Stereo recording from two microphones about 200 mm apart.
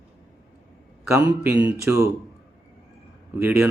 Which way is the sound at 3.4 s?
10° right (ahead or behind).